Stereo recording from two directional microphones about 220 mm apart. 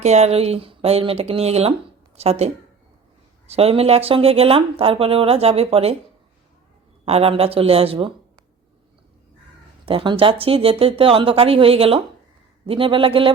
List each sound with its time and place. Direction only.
0.0 s speech: 30° right (ahead or behind)
7.0 s speech: 25° right (ahead or behind)
9.8 s speech: 20° right (ahead or behind)